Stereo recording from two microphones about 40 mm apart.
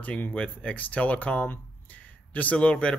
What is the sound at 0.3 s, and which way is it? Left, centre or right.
Speech, left.